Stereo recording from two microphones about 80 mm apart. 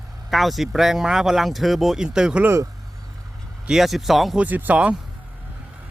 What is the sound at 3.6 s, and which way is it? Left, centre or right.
Speech, centre.